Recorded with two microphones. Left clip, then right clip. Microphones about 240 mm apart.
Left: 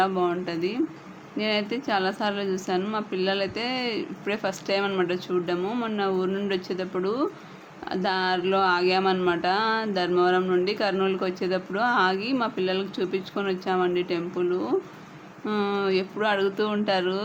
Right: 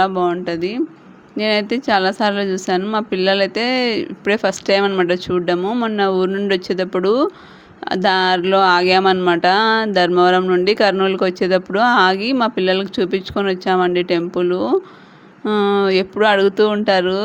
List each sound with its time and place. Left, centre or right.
0.0 s speech: right